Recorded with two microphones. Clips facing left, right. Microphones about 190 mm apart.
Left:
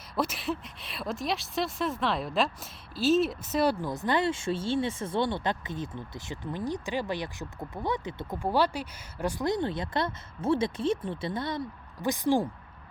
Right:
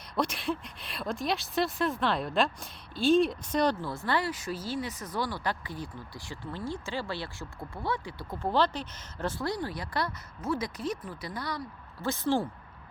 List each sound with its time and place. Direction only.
0.2 s speech: 5° left (ahead or behind)